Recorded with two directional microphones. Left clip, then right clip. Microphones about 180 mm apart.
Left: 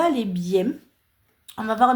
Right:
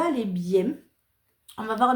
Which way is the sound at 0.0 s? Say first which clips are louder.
Left 4 dB; 45° left (ahead or behind).